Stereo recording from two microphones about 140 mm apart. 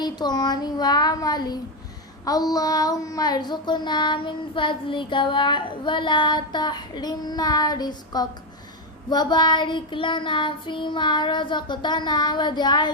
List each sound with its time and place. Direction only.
0.0 s speech: 30° left (ahead or behind)
2.2 s child singing: 25° left (ahead or behind)